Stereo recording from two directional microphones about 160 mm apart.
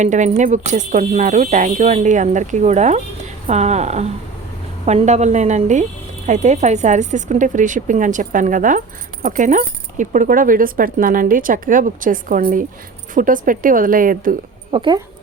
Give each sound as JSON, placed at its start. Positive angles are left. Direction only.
{"t": 0.0, "sound": "speech", "side_deg": -50}
{"t": 14.7, "sound": "speech", "side_deg": -30}